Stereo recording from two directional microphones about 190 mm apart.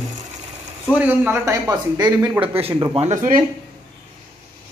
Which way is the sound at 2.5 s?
30° right (ahead or behind).